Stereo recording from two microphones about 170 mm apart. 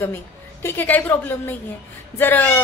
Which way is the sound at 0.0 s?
15° left (ahead or behind).